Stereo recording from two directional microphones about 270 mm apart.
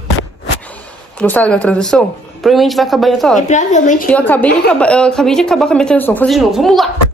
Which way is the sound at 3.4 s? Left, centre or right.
Left.